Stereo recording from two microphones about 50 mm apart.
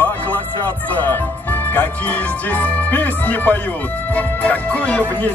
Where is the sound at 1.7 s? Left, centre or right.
Left.